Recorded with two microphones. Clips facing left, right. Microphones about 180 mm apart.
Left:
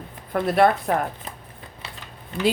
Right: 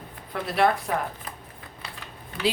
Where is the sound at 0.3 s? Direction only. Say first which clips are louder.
Left 5 dB; 50° left (ahead or behind).